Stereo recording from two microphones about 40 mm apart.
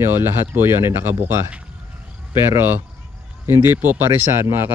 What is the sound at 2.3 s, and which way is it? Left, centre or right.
Speech, right.